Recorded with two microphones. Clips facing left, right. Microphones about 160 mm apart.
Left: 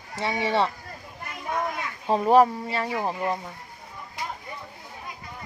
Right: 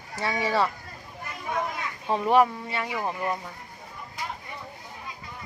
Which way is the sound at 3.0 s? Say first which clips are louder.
Left 2 dB; 20° left (ahead or behind).